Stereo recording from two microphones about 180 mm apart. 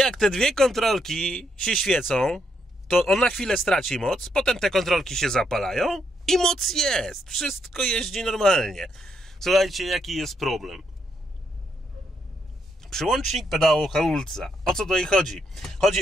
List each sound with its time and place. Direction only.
0.0 s speech: 5° left (ahead or behind)
12.8 s speech: centre (ahead or behind)